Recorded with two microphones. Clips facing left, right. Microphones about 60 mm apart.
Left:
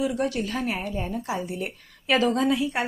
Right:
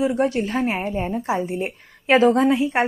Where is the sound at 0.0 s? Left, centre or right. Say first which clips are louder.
Right 5 dB; right.